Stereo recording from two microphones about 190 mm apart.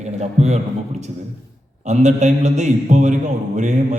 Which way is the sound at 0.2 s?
35° right (ahead or behind).